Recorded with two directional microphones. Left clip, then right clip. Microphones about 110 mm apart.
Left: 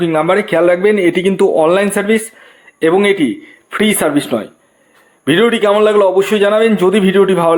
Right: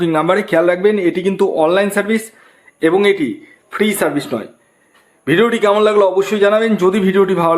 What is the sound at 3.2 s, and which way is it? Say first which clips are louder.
Speech: left 5 dB; 25° left (ahead or behind).